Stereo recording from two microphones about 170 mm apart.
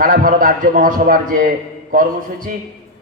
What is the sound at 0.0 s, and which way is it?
A man's voice, 55° right (ahead or behind).